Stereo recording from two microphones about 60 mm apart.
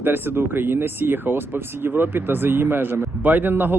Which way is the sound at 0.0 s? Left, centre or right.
Right.